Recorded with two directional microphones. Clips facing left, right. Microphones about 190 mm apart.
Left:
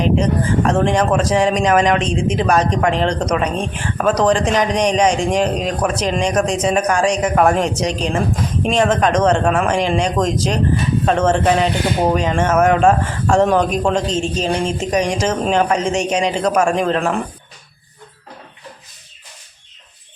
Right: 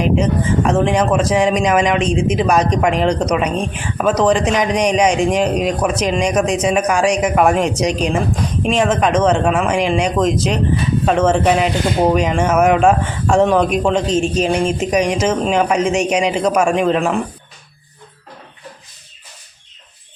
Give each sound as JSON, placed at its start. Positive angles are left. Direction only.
{"t": 0.2, "sound": "speech", "side_deg": -5}
{"t": 9.7, "sound": "speech", "side_deg": 35}
{"t": 10.0, "sound": "speech", "side_deg": -10}